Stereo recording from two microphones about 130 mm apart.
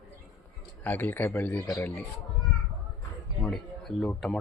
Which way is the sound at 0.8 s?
15° left (ahead or behind).